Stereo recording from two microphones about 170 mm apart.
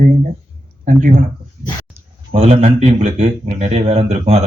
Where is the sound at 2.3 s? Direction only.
40° right (ahead or behind).